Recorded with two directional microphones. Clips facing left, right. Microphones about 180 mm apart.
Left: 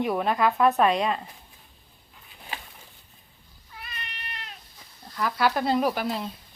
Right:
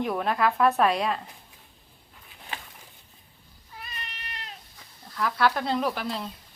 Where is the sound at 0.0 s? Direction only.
5° left (ahead or behind).